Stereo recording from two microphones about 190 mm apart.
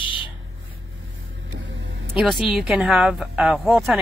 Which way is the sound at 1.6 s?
75° right (ahead or behind).